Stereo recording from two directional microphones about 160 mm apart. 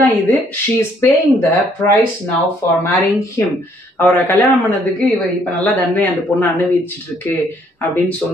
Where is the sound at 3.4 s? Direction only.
15° left (ahead or behind).